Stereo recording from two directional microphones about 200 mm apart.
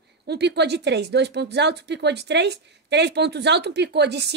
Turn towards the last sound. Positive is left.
turn(degrees=-55)  # may be behind; listen again after turning